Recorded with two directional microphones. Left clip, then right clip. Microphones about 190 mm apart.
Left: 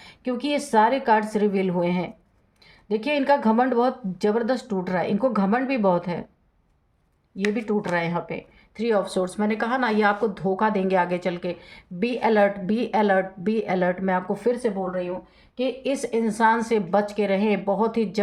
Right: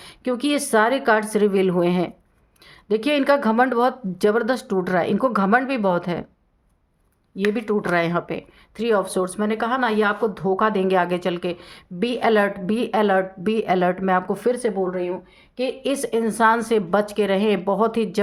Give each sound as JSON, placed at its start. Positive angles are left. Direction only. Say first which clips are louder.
{"t": 0.0, "sound": "speech", "louder": "right 4 dB", "side_deg": -45}
{"t": 7.5, "sound": "speech", "louder": "right 4 dB", "side_deg": -45}